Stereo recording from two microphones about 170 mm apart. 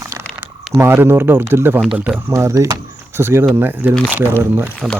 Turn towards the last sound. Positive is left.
turn(degrees=-5)  # may be behind; listen again after turning